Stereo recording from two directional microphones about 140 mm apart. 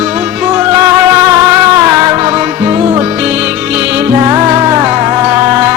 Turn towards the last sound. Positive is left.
turn(degrees=-15)  # may be behind; listen again after turning